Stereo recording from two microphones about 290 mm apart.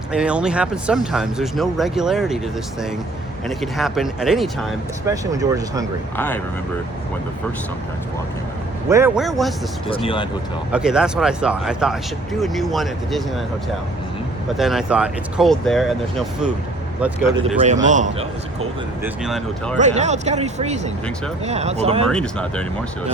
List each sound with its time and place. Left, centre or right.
0.1 s speech: centre
3.6 s speech: centre
5.1 s speech: centre
6.1 s speech: centre
8.9 s speech: centre
9.9 s speech: centre
10.7 s speech: centre
14.5 s speech: centre
17.6 s speech: right
19.0 s speech: centre
19.8 s speech: right
22.1 s speech: centre